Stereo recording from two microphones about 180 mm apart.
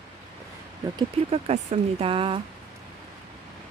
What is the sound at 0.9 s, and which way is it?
Speech, 35° right (ahead or behind).